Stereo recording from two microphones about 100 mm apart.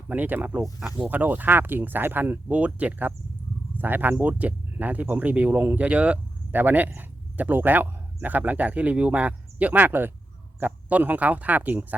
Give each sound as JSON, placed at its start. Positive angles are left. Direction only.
{"t": 0.1, "sound": "speech", "side_deg": -15}